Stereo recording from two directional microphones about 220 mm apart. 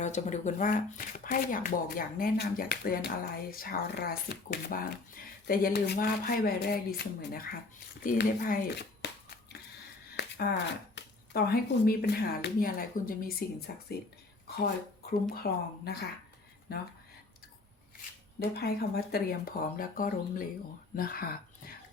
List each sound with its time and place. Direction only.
0.0 s speech: 35° left (ahead or behind)
10.2 s a sound: 45° left (ahead or behind)
10.9 s speech: 45° left (ahead or behind)
18.5 s speech: 45° left (ahead or behind)